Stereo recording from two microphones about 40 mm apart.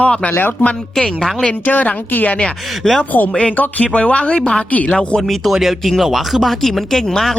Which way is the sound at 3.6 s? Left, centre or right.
Left.